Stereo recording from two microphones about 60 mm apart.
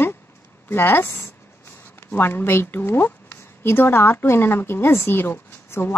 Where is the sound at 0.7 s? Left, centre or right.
Left.